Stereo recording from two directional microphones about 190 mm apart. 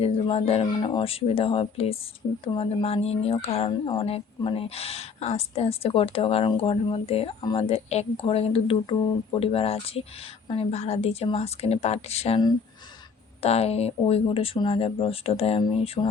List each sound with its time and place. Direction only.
0.0 s speech: 30° left (ahead or behind)
13.4 s speech: 30° left (ahead or behind)